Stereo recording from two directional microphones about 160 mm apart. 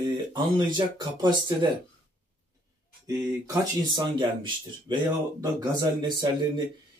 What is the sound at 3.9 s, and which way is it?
Speech, 30° right (ahead or behind).